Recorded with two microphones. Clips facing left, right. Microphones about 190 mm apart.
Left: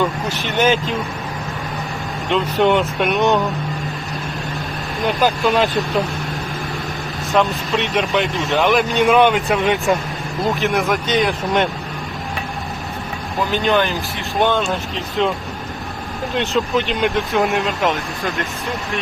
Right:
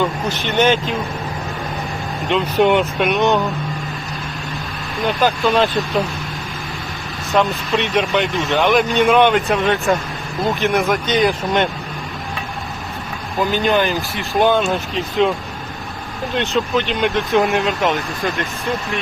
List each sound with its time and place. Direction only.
0.0 s speech: centre (ahead or behind)
2.3 s speech: centre (ahead or behind)
5.2 s speech: centre (ahead or behind)
7.3 s speech: centre (ahead or behind)
9.6 s speech: 15° left (ahead or behind)
10.5 s speech: centre (ahead or behind)
13.5 s speech: 5° right (ahead or behind)